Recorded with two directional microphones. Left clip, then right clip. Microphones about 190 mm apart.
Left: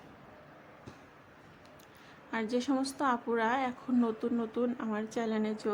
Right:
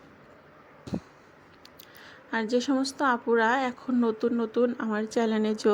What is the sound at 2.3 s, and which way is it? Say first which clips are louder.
A woman's voice: right 6 dB; 20° right (ahead or behind).